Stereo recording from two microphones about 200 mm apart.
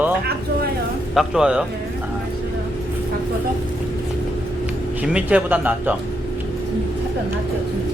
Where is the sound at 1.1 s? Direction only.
Centre (ahead or behind).